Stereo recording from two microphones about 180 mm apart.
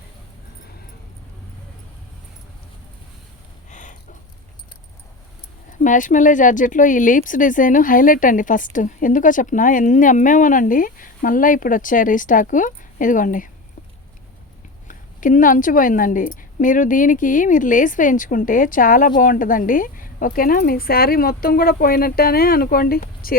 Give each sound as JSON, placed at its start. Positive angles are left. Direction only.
{"t": 3.7, "sound": "a sound", "side_deg": 45}
{"t": 5.7, "sound": "speech", "side_deg": 45}
{"t": 14.8, "sound": "speech", "side_deg": 45}